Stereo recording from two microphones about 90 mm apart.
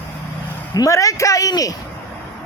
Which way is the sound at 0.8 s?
40° left (ahead or behind).